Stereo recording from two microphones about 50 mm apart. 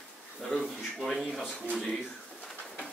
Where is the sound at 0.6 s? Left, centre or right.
Centre.